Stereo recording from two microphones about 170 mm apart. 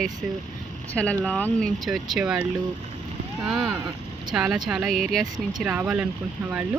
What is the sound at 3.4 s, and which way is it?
Speech, centre (ahead or behind).